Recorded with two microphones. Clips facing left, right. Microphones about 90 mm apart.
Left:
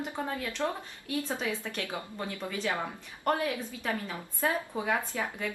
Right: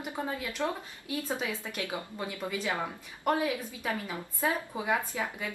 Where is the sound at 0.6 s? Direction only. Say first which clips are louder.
Even; centre (ahead or behind).